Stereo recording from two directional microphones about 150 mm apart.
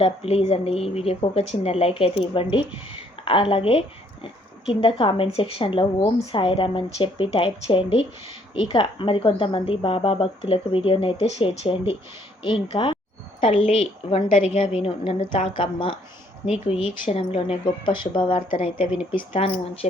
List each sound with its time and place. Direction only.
0.0 s a woman's voice: 40° left (ahead or behind)
17.1 s speech: 40° left (ahead or behind)